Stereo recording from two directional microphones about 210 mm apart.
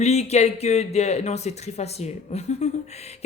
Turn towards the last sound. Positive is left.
turn(degrees=30)  # may be behind; listen again after turning